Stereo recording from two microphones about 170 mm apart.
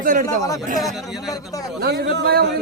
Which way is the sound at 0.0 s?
55° right (ahead or behind).